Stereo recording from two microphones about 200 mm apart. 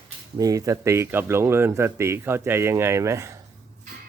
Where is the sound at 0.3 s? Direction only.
15° right (ahead or behind).